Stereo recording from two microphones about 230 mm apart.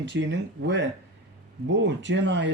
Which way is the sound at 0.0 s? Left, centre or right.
Right.